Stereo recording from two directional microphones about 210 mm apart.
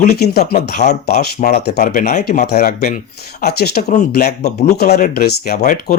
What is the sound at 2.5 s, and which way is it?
Speech, 50° left (ahead or behind).